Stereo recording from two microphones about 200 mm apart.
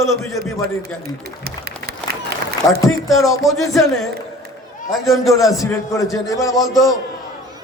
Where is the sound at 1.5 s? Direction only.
50° right (ahead or behind).